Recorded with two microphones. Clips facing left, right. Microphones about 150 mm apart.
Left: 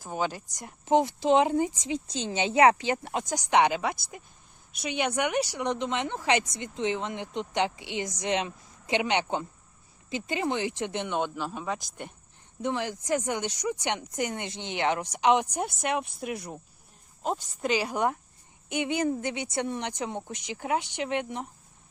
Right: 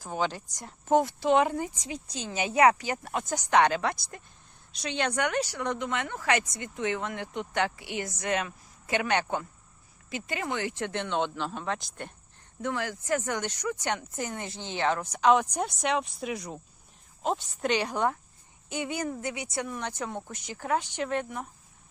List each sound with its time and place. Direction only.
0.0 s speech: 10° left (ahead or behind)
3.3 s speech: 15° left (ahead or behind)
12.6 s speech: 20° left (ahead or behind)
15.5 s speech: 5° left (ahead or behind); by 21.4 s 20° left (ahead or behind)